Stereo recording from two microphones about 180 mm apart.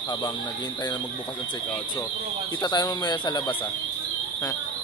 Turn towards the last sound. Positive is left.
turn(degrees=25)  # may be behind; listen again after turning